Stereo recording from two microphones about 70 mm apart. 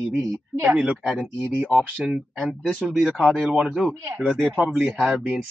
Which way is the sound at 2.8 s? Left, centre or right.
Centre.